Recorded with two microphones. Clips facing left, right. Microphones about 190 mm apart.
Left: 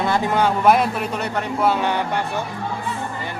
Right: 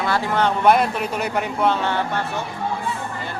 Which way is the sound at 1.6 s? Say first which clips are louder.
Left 2 dB; 10° left (ahead or behind).